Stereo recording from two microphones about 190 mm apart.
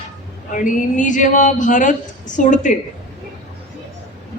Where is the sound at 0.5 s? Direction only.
40° left (ahead or behind).